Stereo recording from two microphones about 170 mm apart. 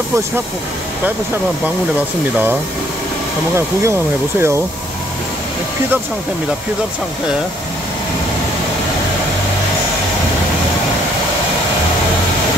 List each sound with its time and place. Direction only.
3.5 s speech: 15° right (ahead or behind)